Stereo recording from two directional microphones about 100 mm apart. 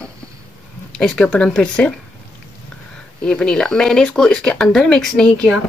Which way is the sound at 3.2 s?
10° left (ahead or behind).